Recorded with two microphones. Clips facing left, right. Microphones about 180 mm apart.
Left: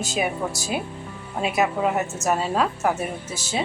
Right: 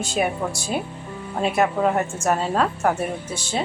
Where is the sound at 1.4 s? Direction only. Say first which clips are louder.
Right 2 dB; 5° left (ahead or behind).